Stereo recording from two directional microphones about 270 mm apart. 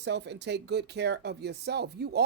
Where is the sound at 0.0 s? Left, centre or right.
Right.